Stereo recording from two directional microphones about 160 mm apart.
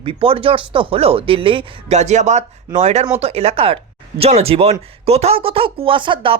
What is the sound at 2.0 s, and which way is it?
Speech, 45° right (ahead or behind).